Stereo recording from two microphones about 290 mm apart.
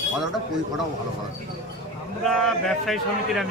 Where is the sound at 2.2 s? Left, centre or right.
Centre.